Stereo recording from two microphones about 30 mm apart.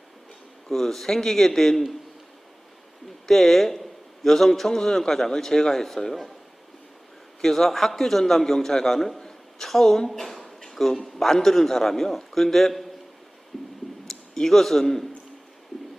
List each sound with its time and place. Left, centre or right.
0.7 s a man's voice: centre
3.2 s a man's voice: centre
7.4 s a man's voice: centre
10.2 s a man's voice: centre
13.5 s a sound: centre
14.1 s a man's voice: centre